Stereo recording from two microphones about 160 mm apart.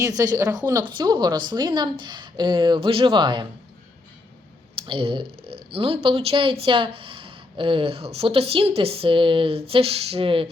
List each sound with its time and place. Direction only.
0.0 s speech: 20° right (ahead or behind)
4.8 s speech: 35° right (ahead or behind)